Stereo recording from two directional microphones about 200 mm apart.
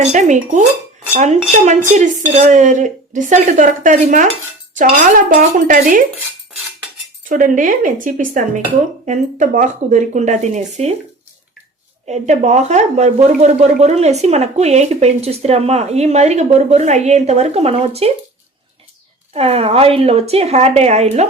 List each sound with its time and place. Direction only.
0.1 s dishes: 35° right (ahead or behind)
1.1 s speech: 35° right (ahead or behind)
7.3 s speech: 40° right (ahead or behind)
12.0 s speech: 35° right (ahead or behind)
19.3 s speech: 30° right (ahead or behind)